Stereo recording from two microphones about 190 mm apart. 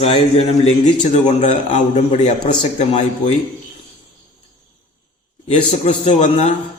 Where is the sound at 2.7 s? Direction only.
35° left (ahead or behind).